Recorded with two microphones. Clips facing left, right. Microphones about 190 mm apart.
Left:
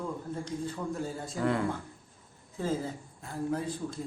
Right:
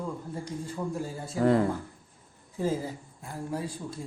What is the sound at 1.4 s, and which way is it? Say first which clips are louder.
Speech: right 6 dB; 35° right (ahead or behind).